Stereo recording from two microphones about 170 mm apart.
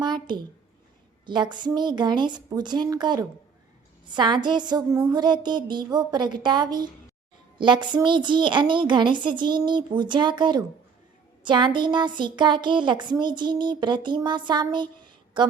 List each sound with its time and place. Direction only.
0.0 s a woman's voice: 25° right (ahead or behind)